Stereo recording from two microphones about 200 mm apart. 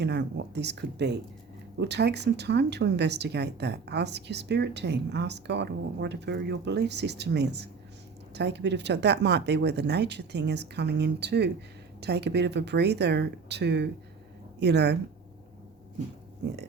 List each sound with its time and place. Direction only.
0.0 s speech: 60° right (ahead or behind)